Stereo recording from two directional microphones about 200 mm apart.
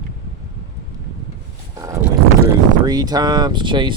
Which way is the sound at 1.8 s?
15° right (ahead or behind).